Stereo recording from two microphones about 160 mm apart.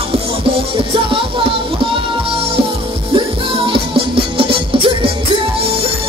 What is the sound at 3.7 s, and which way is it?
Music, 35° right (ahead or behind).